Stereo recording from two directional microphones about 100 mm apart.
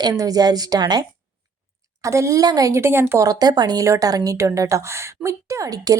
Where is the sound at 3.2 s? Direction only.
40° right (ahead or behind).